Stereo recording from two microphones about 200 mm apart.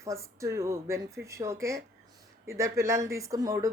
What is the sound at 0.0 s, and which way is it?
Speech, 15° right (ahead or behind).